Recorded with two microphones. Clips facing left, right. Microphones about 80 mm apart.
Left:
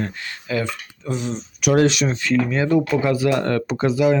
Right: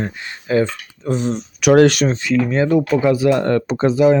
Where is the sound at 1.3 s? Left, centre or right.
Right.